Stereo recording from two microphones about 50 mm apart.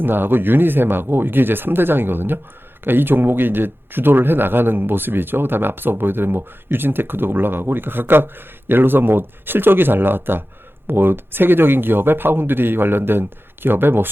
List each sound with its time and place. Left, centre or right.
0.0 s speech: right